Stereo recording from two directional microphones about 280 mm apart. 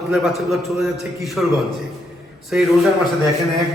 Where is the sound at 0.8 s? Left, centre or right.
Centre.